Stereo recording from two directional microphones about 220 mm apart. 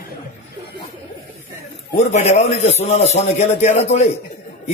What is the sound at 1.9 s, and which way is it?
A man's voice, 30° left (ahead or behind).